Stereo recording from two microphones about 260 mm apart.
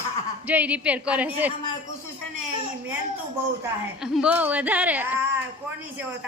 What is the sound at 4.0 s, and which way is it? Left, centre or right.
A woman's voice, centre.